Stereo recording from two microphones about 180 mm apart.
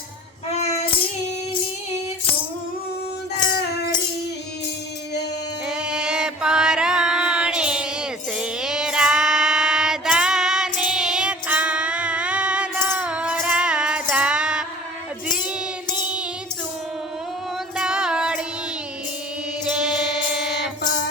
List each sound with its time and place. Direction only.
0.5 s music: 35° left (ahead or behind)
5.6 s music: 5° right (ahead or behind)
17.7 s music: 5° right (ahead or behind)
20.3 s music: 5° right (ahead or behind)